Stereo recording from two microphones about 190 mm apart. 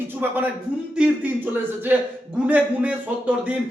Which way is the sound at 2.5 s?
5° right (ahead or behind).